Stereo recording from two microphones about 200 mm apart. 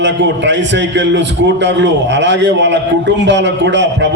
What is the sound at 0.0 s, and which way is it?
A man's voice, 65° right (ahead or behind).